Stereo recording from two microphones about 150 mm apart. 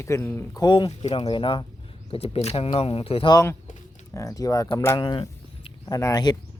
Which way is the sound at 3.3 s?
20° left (ahead or behind).